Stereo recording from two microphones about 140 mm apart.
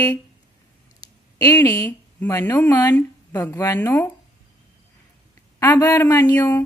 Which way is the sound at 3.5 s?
25° left (ahead or behind).